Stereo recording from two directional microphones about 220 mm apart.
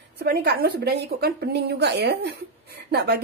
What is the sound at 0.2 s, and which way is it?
A woman's voice, 45° right (ahead or behind).